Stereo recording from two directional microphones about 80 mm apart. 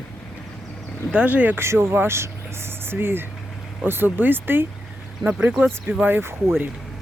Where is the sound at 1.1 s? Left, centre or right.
Centre.